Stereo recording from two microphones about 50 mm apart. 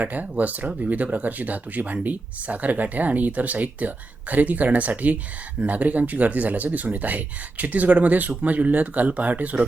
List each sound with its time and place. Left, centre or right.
0.0 s speech: right